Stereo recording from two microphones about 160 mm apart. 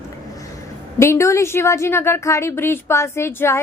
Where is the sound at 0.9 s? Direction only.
15° left (ahead or behind).